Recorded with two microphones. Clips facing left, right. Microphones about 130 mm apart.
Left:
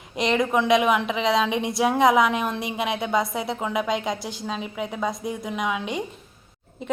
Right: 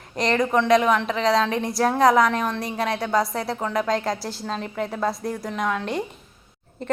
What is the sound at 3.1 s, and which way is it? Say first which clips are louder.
A woman's voice: right 1 dB; centre (ahead or behind).